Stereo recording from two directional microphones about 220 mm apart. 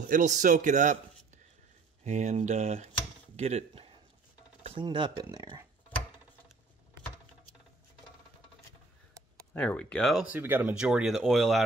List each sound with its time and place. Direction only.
0.1 s a man's voice: 35° right (ahead or behind); by 5.7 s 15° right (ahead or behind)
9.5 s speech: 5° left (ahead or behind)